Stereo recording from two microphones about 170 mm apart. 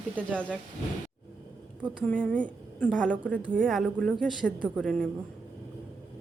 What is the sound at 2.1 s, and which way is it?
A woman's voice, 5° left (ahead or behind).